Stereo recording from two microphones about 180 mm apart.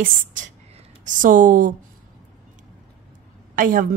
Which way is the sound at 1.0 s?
45° right (ahead or behind).